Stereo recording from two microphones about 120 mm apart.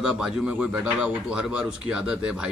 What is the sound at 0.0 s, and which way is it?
Speech, 5° right (ahead or behind).